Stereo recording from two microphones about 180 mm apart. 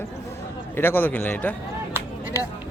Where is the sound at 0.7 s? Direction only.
10° left (ahead or behind).